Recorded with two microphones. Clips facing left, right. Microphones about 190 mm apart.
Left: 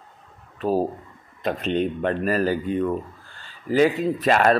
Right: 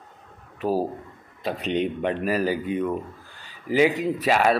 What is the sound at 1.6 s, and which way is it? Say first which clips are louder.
Speech: even; 15° right (ahead or behind).